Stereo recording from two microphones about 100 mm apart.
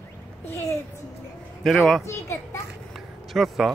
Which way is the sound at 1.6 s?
Centre (ahead or behind).